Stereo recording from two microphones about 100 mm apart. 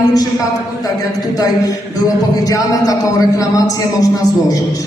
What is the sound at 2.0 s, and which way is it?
A man's voice, 40° left (ahead or behind).